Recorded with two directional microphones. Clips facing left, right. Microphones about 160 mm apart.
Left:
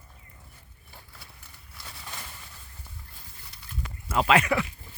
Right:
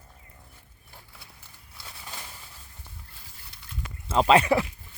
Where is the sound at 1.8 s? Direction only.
5° right (ahead or behind).